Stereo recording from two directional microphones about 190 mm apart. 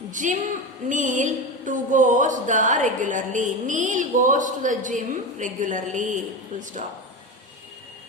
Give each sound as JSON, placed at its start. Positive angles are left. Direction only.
{"t": 0.1, "sound": "a woman's voice", "side_deg": -40}
{"t": 0.9, "sound": "music", "side_deg": -40}